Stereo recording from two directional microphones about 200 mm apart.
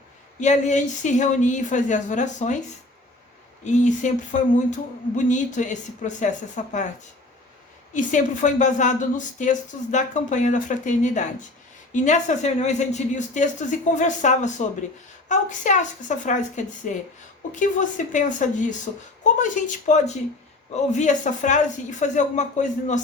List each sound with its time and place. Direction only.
0.3 s a woman's voice: 35° left (ahead or behind)
3.6 s a woman's voice: 35° left (ahead or behind)
7.9 s a woman's voice: 40° left (ahead or behind)